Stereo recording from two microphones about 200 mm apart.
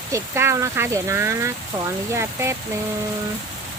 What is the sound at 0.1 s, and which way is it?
Speech, 15° right (ahead or behind).